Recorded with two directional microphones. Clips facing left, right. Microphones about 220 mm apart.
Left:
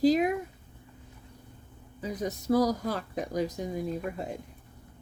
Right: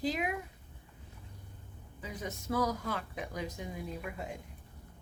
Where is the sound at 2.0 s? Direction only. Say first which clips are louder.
Left 8 dB; 40° left (ahead or behind).